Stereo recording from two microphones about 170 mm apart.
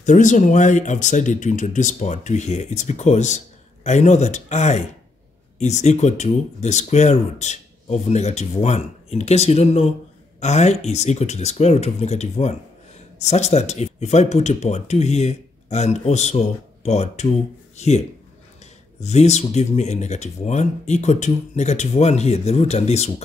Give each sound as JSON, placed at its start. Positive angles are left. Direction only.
{"t": 0.0, "sound": "speech", "side_deg": 45}